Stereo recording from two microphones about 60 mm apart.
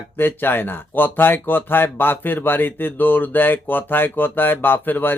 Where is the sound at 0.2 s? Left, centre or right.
Left.